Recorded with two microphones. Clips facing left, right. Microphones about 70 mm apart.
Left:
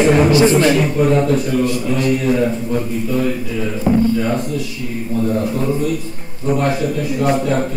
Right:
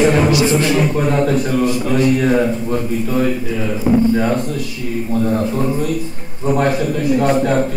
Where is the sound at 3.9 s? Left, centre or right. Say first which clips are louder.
Right 1 dB; centre.